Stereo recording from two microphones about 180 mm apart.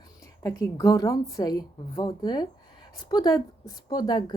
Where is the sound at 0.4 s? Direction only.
20° left (ahead or behind).